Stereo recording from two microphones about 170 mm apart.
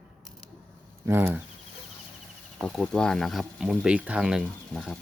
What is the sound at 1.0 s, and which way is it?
Speech, 15° right (ahead or behind).